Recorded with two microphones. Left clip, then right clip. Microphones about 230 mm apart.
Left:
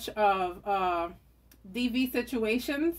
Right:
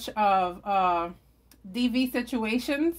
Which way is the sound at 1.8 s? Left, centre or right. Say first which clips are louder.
Right 3 dB; right.